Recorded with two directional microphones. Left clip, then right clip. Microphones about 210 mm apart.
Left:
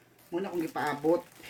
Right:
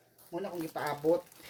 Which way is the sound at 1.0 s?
10° left (ahead or behind).